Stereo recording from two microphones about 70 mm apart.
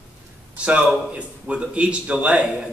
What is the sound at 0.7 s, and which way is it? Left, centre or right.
Speech, centre.